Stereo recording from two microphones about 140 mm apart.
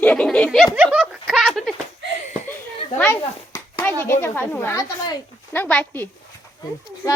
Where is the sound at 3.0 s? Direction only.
20° left (ahead or behind).